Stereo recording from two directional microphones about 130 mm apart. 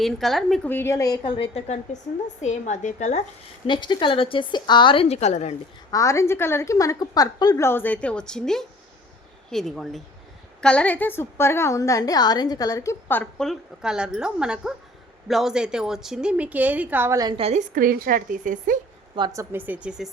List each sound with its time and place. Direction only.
0.0 s a woman's voice: centre (ahead or behind)
0.7 s a woman's voice: 20° left (ahead or behind)
1.2 s a woman's voice: 45° left (ahead or behind); by 3.2 s 65° left (ahead or behind)
3.7 s speech: 35° left (ahead or behind)
5.0 s a woman's voice: 55° left (ahead or behind)
5.9 s a woman's voice: 25° left (ahead or behind)
7.6 s a woman's voice: 15° left (ahead or behind)
13.4 s a woman's voice: centre (ahead or behind)
17.3 s a woman's voice: 55° right (ahead or behind); by 18.8 s 90° right
19.3 s speech: 20° right (ahead or behind)